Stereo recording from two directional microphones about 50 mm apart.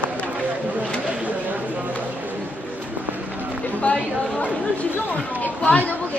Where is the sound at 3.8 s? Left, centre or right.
Left.